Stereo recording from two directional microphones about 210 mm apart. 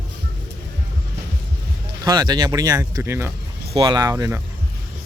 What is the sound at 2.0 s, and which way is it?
Speech, 20° right (ahead or behind).